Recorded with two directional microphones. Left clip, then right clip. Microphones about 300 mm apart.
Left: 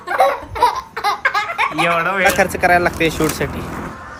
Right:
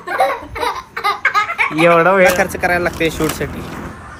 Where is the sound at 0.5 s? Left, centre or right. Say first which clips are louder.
Left 4 dB; left.